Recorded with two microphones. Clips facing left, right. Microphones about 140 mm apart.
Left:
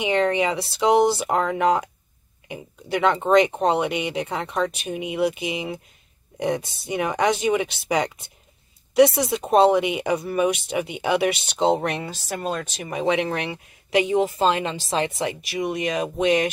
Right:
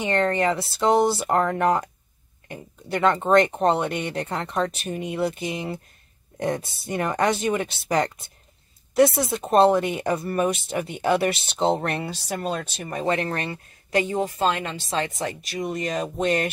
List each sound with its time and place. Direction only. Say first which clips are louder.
0.0 s speech: left 1 dB; centre (ahead or behind)
6.9 s speech: left 1 dB; centre (ahead or behind)
14.5 s a woman's voice: left 3 dB; 25° left (ahead or behind)
15.4 s speech: left 2 dB; 5° left (ahead or behind)